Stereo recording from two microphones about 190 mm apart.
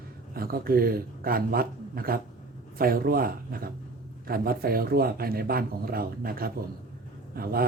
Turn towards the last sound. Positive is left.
turn(degrees=-50)  # may be behind; listen again after turning